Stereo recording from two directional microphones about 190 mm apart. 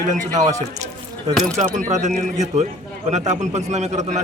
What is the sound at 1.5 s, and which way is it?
A man's voice, 35° right (ahead or behind).